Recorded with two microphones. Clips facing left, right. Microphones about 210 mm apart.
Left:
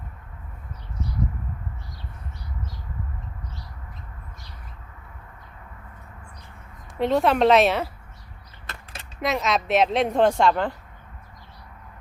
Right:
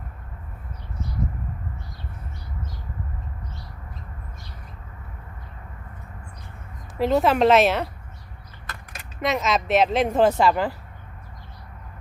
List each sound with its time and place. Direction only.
7.0 s speech: centre (ahead or behind)
8.7 s a sound: 25° left (ahead or behind)
9.2 s speech: centre (ahead or behind)